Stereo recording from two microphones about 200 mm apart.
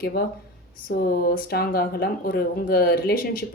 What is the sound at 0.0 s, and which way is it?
Speech, 50° left (ahead or behind).